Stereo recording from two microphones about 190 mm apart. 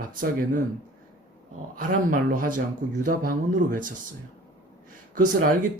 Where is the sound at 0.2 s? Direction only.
45° right (ahead or behind).